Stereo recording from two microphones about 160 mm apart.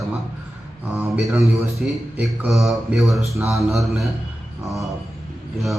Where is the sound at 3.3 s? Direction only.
20° right (ahead or behind).